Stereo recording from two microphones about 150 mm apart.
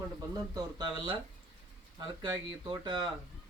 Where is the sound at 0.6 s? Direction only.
25° right (ahead or behind).